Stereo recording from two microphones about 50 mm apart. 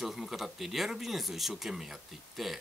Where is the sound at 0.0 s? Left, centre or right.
Centre.